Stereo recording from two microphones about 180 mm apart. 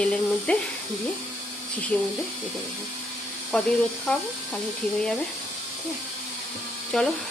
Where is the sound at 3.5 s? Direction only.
5° left (ahead or behind).